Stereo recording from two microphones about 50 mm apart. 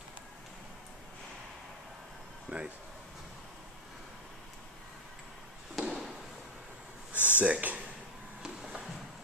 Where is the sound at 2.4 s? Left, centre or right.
Right.